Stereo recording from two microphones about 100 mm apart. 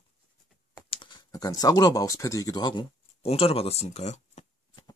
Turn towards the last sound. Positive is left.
turn(degrees=90)